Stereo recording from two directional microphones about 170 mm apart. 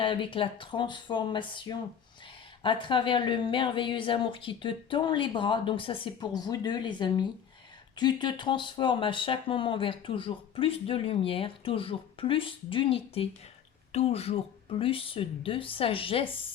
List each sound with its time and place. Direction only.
0.0 s a woman's voice: 30° left (ahead or behind)